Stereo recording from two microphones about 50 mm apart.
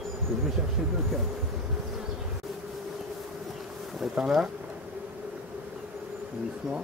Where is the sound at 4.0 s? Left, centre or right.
Centre.